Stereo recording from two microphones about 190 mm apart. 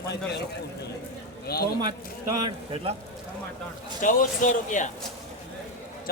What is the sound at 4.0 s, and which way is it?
Speech, 45° left (ahead or behind).